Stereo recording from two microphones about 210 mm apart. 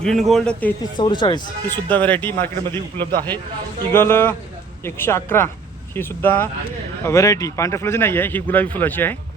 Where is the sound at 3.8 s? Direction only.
10° left (ahead or behind).